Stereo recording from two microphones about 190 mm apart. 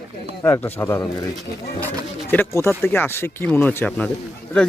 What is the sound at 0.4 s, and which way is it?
Speech, 10° left (ahead or behind).